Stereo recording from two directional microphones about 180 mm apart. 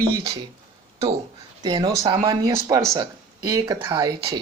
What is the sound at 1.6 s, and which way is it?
Speech, 25° right (ahead or behind).